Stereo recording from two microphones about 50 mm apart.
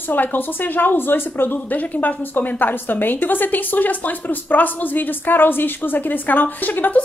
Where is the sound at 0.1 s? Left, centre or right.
Left.